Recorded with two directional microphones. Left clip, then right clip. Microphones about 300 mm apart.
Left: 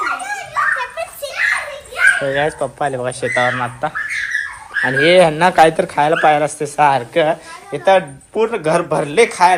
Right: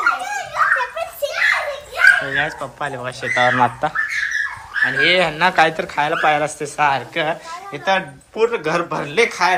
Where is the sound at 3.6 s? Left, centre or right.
Centre.